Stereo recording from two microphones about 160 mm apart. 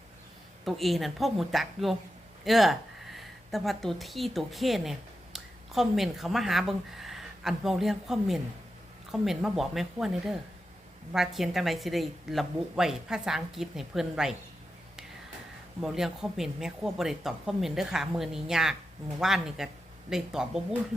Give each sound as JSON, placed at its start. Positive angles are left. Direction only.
{"t": 0.6, "sound": "a woman's voice", "side_deg": 0}
{"t": 15.8, "sound": "a woman's voice", "side_deg": 0}